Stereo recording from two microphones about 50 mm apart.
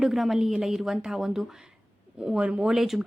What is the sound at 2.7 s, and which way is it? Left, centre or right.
Speech, centre.